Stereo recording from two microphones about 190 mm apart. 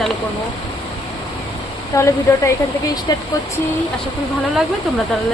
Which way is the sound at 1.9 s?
15° left (ahead or behind).